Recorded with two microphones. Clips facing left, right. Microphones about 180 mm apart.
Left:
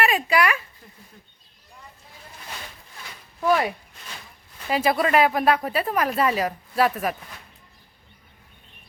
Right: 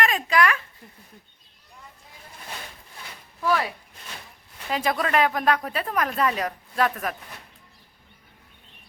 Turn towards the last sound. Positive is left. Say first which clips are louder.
# left 3 dB
turn(degrees=10)  # may be behind; listen again after turning